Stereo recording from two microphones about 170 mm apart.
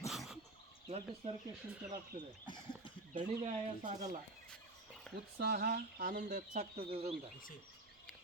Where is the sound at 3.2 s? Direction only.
50° right (ahead or behind).